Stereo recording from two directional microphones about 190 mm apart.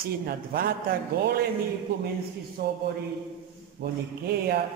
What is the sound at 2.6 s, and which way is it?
Speech, 50° right (ahead or behind).